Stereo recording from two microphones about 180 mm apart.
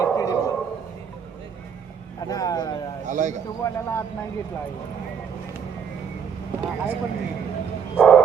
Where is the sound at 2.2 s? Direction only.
20° left (ahead or behind).